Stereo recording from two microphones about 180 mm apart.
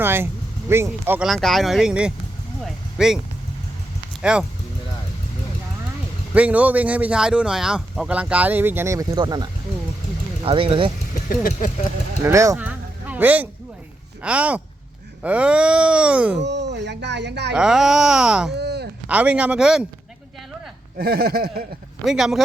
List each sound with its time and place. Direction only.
0.0 s speech: 10° right (ahead or behind)
1.3 s speech: centre (ahead or behind)
2.6 s vehicle: centre (ahead or behind)
4.2 s speech: 5° right (ahead or behind)
6.3 s speech: 10° right (ahead or behind); by 10.9 s 30° right (ahead or behind)
11.1 s speech: 50° left (ahead or behind)
12.2 s speech: 15° right (ahead or behind)
16.4 s speech: 70° right (ahead or behind)
17.5 s speech: 5° right (ahead or behind)
18.5 s a sound: 65° right (ahead or behind)
19.0 s speech: 5° right (ahead or behind)
21.0 s speech: 60° right (ahead or behind)
22.0 s speech: centre (ahead or behind)